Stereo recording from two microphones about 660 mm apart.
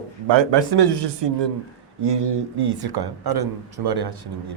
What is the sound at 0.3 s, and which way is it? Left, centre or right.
A man's voice, right.